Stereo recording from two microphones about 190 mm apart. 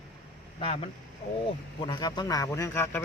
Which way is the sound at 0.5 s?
30° left (ahead or behind).